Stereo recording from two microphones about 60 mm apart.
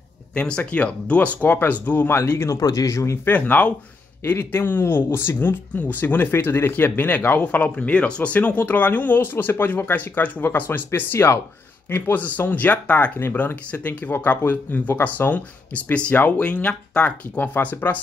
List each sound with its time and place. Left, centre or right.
0.3 s speech: centre
2.1 s speech: left
2.6 s speech: left
3.3 s speech: left
4.4 s speech: left